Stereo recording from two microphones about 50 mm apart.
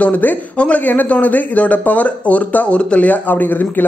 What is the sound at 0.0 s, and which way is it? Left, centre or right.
Speech, left.